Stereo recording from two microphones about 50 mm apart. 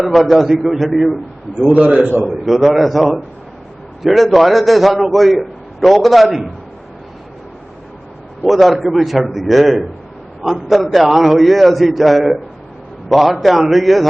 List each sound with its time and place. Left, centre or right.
0.1 s a man's voice: centre
1.6 s a man's voice: right
2.2 s a man's voice: centre
8.4 s a man's voice: centre